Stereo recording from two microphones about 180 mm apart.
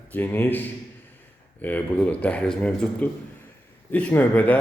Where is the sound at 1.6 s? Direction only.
10° left (ahead or behind).